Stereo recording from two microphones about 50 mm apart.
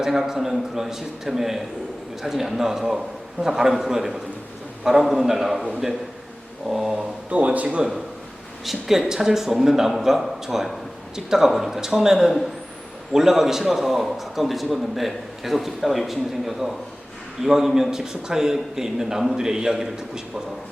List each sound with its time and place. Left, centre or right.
0.0 s a man's voice: centre
6.7 s a man's voice: centre
7.3 s speech: right
8.6 s a man's voice: centre